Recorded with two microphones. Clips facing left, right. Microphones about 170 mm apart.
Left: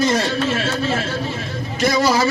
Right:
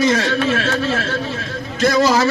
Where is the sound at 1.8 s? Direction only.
10° left (ahead or behind).